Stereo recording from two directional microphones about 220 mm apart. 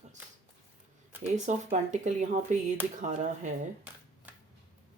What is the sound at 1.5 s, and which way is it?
Speech, 35° right (ahead or behind).